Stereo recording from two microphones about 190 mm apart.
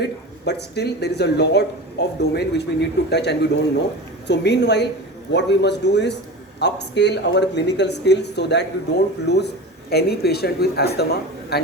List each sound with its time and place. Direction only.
0.0 s speech: 60° left (ahead or behind)